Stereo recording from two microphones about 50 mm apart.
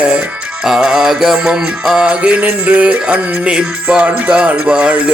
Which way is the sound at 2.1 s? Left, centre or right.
Right.